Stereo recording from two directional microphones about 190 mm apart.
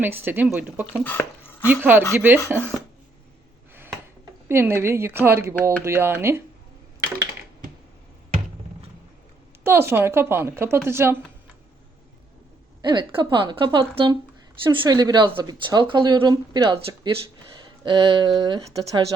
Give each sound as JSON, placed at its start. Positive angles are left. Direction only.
{"t": 0.0, "sound": "a woman's voice", "side_deg": -10}
{"t": 1.0, "sound": "speech", "side_deg": 10}
{"t": 1.6, "sound": "a woman's voice", "side_deg": -10}
{"t": 4.4, "sound": "a woman's voice", "side_deg": -10}
{"t": 9.6, "sound": "a woman's voice", "side_deg": -15}
{"t": 12.8, "sound": "a woman's voice", "side_deg": -25}